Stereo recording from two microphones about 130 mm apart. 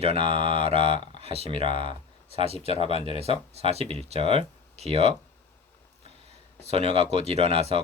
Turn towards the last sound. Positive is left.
turn(degrees=-50)  # may be behind; listen again after turning